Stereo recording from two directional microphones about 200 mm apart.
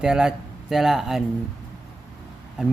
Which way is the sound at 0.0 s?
5° right (ahead or behind).